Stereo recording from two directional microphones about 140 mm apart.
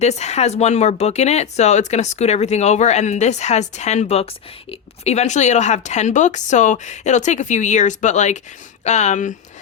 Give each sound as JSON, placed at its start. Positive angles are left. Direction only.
{"t": 0.0, "sound": "speech", "side_deg": 55}